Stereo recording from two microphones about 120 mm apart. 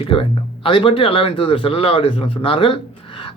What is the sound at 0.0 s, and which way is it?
A man's voice, 50° left (ahead or behind).